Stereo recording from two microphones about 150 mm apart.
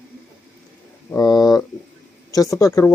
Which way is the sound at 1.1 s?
25° left (ahead or behind).